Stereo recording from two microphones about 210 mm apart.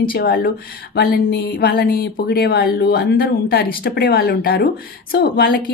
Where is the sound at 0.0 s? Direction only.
45° left (ahead or behind).